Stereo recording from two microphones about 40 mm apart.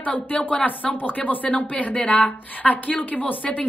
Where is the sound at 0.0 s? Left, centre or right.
Left.